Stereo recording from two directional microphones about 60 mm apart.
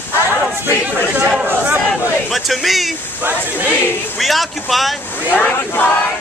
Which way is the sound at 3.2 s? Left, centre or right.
Right.